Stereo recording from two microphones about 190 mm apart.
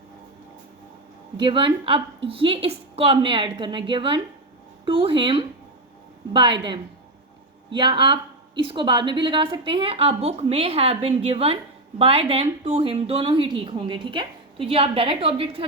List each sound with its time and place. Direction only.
1.4 s a woman's voice: 25° right (ahead or behind)